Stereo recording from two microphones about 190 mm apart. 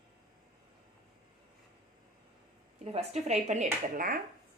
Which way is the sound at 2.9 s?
35° right (ahead or behind).